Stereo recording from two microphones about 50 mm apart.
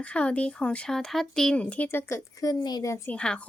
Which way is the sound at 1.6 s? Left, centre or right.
Left.